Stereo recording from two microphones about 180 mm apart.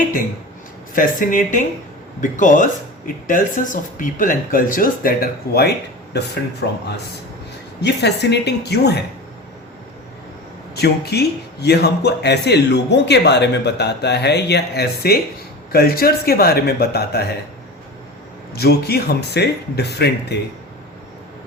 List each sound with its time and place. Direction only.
0.9 s speech: 50° left (ahead or behind); by 9.0 s 65° left (ahead or behind)
10.8 s speech: 65° left (ahead or behind)
18.5 s speech: 60° left (ahead or behind)